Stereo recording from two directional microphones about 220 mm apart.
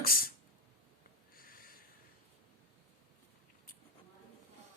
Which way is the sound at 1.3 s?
40° left (ahead or behind).